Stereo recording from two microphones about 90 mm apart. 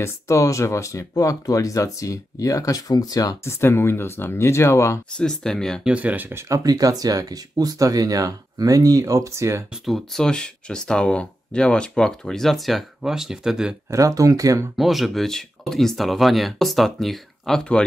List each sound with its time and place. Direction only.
0.0 s speech: 35° left (ahead or behind)
3.4 s speech: 30° left (ahead or behind)
5.1 s speech: 5° left (ahead or behind)
5.9 s speech: 15° right (ahead or behind)
6.5 s speech: 45° right (ahead or behind)
9.7 s speech: centre (ahead or behind)
13.8 s speech: 40° right (ahead or behind)
14.8 s speech: centre (ahead or behind)